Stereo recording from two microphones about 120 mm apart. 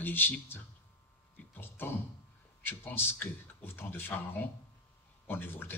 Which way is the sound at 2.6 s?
15° left (ahead or behind).